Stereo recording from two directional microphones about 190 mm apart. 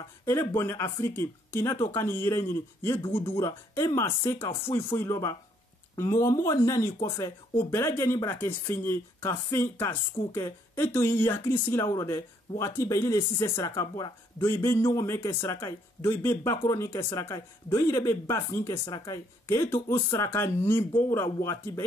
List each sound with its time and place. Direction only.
0.2 s speech: 15° left (ahead or behind)